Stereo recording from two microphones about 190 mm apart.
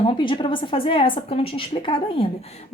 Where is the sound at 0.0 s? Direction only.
25° left (ahead or behind).